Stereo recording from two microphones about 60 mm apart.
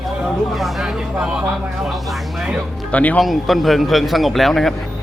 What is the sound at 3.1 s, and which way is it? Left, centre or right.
Speech, centre.